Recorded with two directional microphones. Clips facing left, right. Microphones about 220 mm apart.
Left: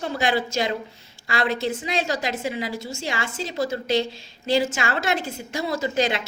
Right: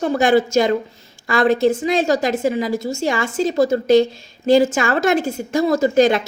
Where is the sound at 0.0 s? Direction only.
45° right (ahead or behind).